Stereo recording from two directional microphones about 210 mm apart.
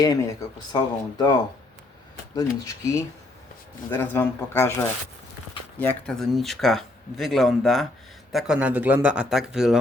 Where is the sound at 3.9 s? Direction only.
10° left (ahead or behind).